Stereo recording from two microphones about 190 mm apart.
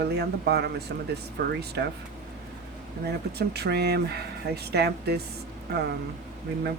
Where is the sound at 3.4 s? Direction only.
60° right (ahead or behind).